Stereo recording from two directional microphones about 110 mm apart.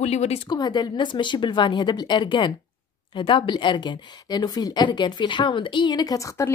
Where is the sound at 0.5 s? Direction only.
40° left (ahead or behind).